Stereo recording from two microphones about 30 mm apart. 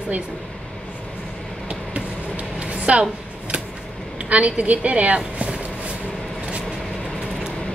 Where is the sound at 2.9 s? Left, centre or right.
Right.